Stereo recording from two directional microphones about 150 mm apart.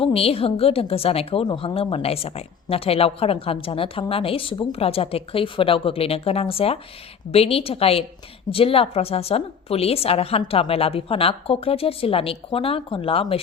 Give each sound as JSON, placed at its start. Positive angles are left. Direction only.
{"t": 0.0, "sound": "a woman's voice", "side_deg": 40}